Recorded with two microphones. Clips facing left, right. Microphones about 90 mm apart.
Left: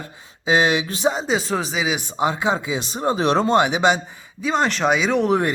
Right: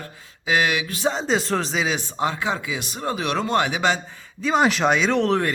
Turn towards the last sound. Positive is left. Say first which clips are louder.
# left 1 dB
turn(degrees=5)  # may be behind; listen again after turning